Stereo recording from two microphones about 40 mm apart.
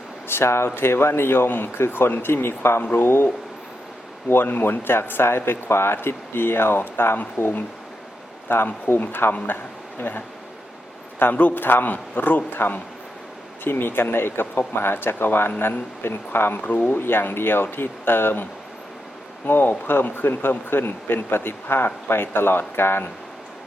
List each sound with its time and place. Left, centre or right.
0.3 s speech: left
3.0 s speech: left
4.3 s speech: left
7.4 s speech: left
8.4 s a man's voice: left
16.0 s speech: left
16.6 s speech: left
19.5 s speech: left